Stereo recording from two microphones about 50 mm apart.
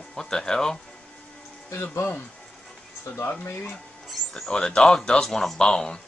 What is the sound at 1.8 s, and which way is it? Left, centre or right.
Speech, left.